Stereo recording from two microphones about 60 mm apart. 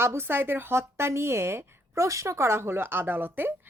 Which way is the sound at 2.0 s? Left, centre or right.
Right.